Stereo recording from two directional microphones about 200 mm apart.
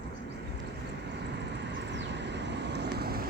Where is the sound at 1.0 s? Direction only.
60° right (ahead or behind).